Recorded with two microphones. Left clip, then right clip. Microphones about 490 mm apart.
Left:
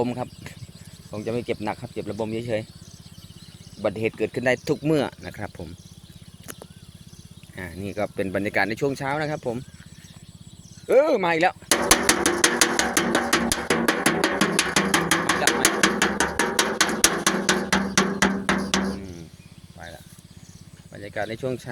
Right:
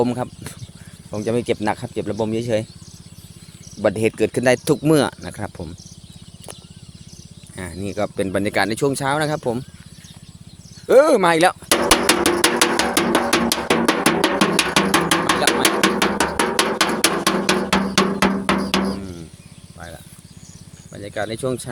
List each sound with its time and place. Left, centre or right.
0.0 s speech: left
3.8 s speech: left
7.5 s speech: left
10.8 s drum: left
20.9 s cricket: left